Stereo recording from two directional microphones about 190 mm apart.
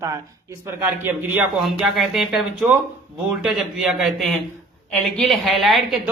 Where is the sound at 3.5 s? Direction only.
Centre (ahead or behind).